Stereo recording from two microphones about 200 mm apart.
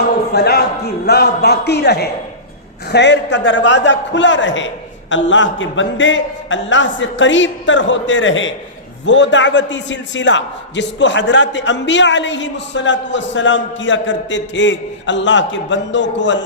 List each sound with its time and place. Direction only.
0.3 s music: 50° left (ahead or behind)
1.0 s a man's voice: 55° left (ahead or behind)